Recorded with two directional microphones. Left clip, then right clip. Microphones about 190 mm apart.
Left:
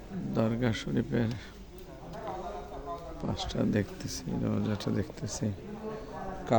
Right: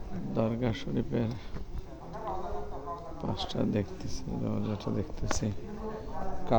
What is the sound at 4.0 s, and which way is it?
Speech, 40° left (ahead or behind).